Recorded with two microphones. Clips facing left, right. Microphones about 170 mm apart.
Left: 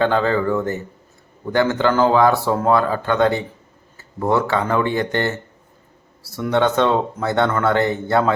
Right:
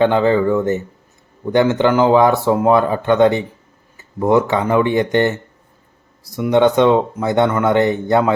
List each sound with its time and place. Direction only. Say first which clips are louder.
0.0 s speech: right 4 dB; 20° right (ahead or behind)